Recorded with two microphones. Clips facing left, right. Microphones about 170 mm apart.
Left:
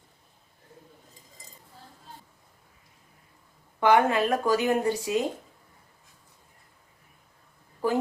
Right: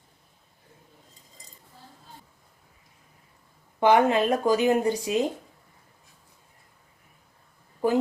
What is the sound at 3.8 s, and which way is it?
Speech, 20° right (ahead or behind).